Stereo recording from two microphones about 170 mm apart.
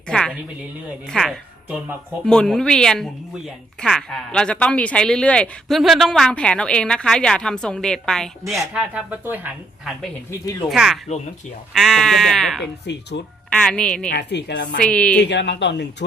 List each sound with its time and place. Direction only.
0.1 s a sound: 5° left (ahead or behind)
1.1 s a woman's voice: centre (ahead or behind)
10.7 s speech: centre (ahead or behind)
12.8 s a woman's voice: 85° left
13.5 s speech: 5° left (ahead or behind)
14.1 s a woman's voice: 80° left
14.8 s speech: 5° left (ahead or behind)
15.2 s speech: 90° left